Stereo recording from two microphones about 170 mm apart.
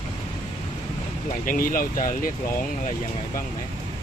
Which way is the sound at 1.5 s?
55° left (ahead or behind).